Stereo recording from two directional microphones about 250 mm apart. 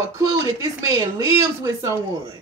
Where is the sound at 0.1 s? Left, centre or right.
Centre.